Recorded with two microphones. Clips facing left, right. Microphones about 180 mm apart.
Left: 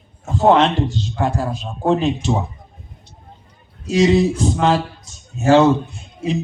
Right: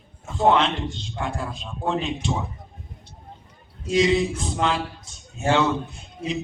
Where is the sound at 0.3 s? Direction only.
40° left (ahead or behind).